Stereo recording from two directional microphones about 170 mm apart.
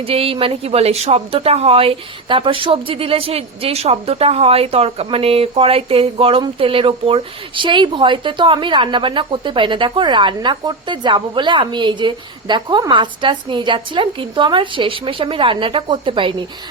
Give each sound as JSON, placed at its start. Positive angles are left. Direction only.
{"t": 0.0, "sound": "a woman's voice", "side_deg": -35}